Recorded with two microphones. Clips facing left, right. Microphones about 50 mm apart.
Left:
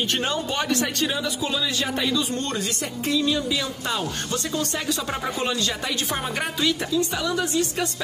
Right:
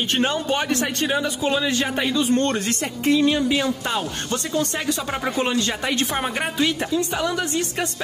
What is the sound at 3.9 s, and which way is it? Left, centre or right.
Speech, right.